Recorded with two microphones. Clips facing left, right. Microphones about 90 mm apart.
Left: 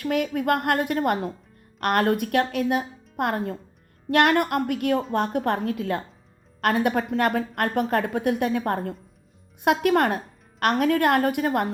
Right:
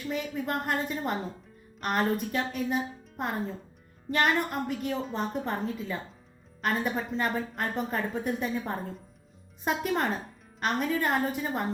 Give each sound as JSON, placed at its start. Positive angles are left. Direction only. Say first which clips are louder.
{"t": 0.0, "sound": "a woman's voice", "louder": "left 8 dB", "side_deg": 65}